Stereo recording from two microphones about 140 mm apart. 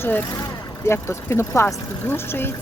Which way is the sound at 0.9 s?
20° left (ahead or behind).